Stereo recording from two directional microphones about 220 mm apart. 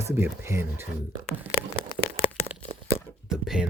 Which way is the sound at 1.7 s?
25° left (ahead or behind).